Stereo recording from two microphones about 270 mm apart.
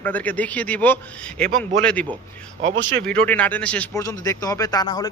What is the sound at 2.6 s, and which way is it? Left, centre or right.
Speech, right.